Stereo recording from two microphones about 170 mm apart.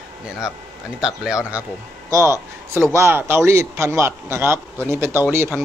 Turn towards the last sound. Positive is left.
turn(degrees=-15)  # may be behind; listen again after turning